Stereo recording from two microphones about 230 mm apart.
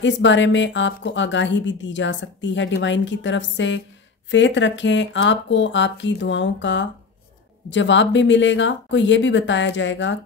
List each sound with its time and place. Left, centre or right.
0.0 s speech: left